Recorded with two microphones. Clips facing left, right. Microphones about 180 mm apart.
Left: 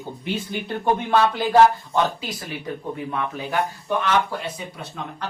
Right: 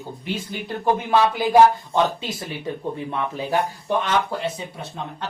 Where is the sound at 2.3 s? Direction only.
25° right (ahead or behind).